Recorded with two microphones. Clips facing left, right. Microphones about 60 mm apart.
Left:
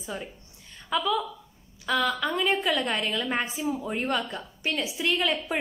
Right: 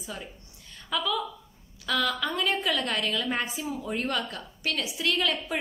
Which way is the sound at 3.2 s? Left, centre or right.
Centre.